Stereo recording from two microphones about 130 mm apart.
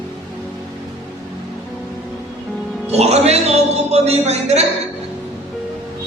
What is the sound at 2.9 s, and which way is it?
A man's voice, 55° right (ahead or behind).